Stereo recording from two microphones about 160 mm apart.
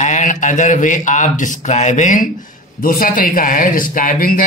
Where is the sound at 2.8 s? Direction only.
60° left (ahead or behind).